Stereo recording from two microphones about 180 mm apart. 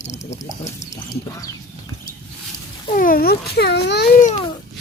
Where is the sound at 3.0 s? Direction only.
55° left (ahead or behind); by 4.1 s 70° left (ahead or behind).